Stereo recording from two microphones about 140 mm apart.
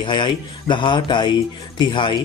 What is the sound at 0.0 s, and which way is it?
Speech, 35° left (ahead or behind).